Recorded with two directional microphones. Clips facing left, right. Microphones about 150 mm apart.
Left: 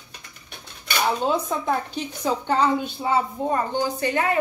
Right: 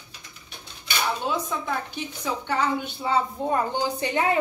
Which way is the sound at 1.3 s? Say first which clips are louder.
Left 4 dB; 45° left (ahead or behind).